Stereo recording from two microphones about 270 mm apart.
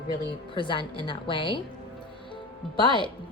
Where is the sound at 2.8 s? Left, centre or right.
Centre.